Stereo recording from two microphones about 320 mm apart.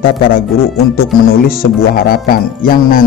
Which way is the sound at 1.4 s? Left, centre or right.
Left.